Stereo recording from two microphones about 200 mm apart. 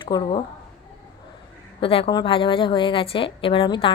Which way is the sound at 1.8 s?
25° left (ahead or behind).